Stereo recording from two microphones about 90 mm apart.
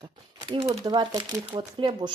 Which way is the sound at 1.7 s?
75° right (ahead or behind).